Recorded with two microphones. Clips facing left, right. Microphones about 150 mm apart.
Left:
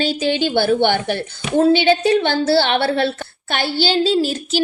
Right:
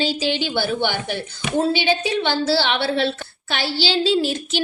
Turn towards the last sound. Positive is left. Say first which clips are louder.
# left 2 dB
turn(degrees=40)  # may be behind; listen again after turning